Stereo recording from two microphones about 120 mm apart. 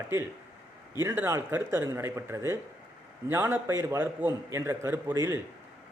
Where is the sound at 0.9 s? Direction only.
20° right (ahead or behind).